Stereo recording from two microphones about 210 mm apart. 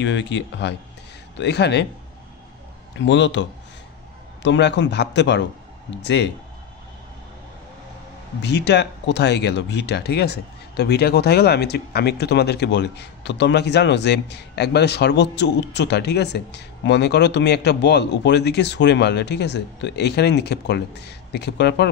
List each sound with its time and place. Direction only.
0.0 s a man's voice: 60° left (ahead or behind)
3.0 s a man's voice: 60° left (ahead or behind)
8.4 s speech: 55° left (ahead or behind)